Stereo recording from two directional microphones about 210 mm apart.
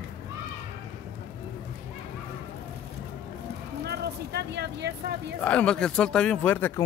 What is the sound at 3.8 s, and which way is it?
Speech, 50° right (ahead or behind).